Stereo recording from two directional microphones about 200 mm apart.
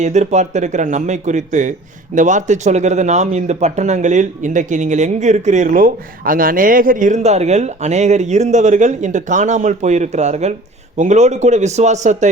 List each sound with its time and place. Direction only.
0.0 s speech: 35° right (ahead or behind)